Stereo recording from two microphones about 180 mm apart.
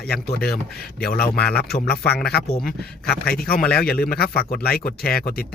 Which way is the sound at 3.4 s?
55° left (ahead or behind).